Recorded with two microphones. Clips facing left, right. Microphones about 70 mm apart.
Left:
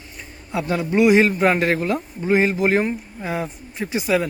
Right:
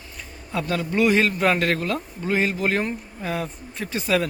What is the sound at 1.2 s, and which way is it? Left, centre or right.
Speech, left.